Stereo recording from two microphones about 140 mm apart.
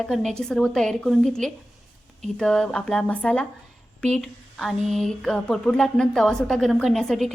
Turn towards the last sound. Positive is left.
turn(degrees=5)  # may be behind; listen again after turning